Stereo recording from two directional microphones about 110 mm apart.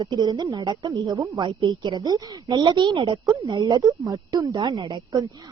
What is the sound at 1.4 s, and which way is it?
A woman's voice, 45° right (ahead or behind).